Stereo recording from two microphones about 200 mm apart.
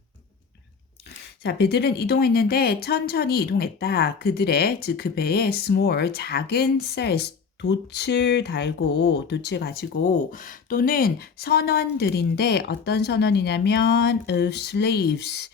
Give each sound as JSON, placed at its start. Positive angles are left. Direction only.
{"t": 1.5, "sound": "a woman's voice", "side_deg": 55}